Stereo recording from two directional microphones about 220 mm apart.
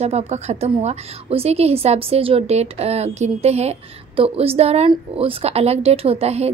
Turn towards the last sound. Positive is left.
turn(degrees=-30)  # may be behind; listen again after turning